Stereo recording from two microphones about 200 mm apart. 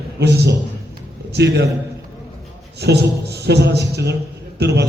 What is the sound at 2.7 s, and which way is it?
A man's voice, 55° right (ahead or behind).